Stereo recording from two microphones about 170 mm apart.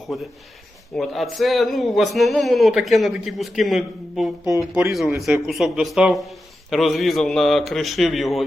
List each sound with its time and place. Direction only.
0.9 s a man's voice: centre (ahead or behind)
4.4 s speech: 15° right (ahead or behind)
4.9 s a man's voice: centre (ahead or behind)